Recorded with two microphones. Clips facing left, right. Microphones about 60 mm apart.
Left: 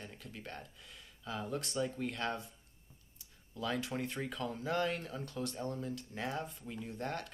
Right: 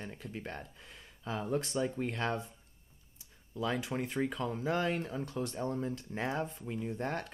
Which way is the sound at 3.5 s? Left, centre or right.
Centre.